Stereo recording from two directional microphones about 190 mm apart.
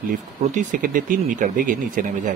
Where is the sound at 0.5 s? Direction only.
45° right (ahead or behind).